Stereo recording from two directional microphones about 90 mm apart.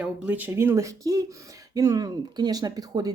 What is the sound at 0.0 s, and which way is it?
Speech, 15° right (ahead or behind).